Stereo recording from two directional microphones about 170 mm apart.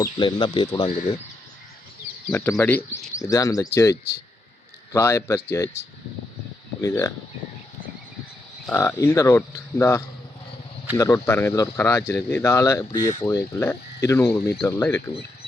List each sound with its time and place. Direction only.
0.0 s speech: 25° left (ahead or behind)
2.3 s speech: 10° left (ahead or behind)
4.9 s speech: 15° left (ahead or behind)
6.8 s speech: 20° left (ahead or behind)
8.7 s speech: 15° left (ahead or behind)